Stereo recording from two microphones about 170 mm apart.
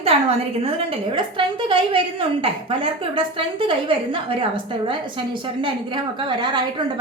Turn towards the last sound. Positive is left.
turn(degrees=-25)  # may be behind; listen again after turning